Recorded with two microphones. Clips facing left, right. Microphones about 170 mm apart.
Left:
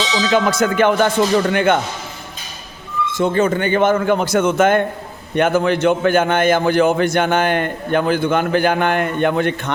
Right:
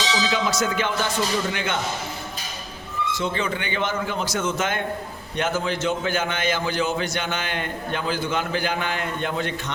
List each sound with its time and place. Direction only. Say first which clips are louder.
0.2 s a man's voice: left 11 dB; 55° left (ahead or behind)
3.1 s a man's voice: left 10 dB; 50° left (ahead or behind)